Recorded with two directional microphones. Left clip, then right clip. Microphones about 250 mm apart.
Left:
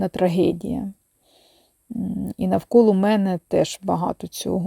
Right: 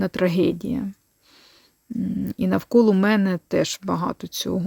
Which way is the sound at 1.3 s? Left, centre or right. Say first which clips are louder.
Right 4 dB; centre.